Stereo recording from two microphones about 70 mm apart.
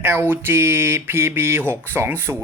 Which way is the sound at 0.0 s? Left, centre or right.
Right.